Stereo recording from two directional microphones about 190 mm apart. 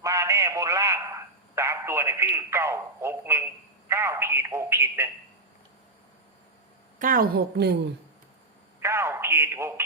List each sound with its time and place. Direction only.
0.0 s a sound: 15° right (ahead or behind)
3.8 s speech: 15° right (ahead or behind)
7.0 s a woman's voice: 50° right (ahead or behind)
8.8 s speech: 15° right (ahead or behind)